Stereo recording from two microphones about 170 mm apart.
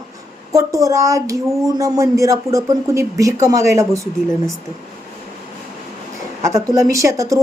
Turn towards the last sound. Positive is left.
turn(degrees=-20)  # may be behind; listen again after turning